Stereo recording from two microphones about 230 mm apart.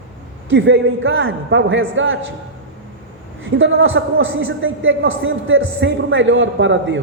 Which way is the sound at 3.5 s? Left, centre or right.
Right.